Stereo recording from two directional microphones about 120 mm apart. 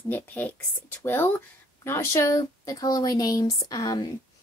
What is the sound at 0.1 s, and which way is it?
Speech, 15° left (ahead or behind).